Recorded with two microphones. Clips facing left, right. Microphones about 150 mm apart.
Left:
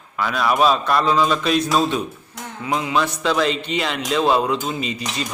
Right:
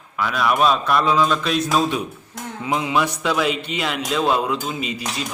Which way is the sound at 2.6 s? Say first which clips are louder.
Even; 20° right (ahead or behind).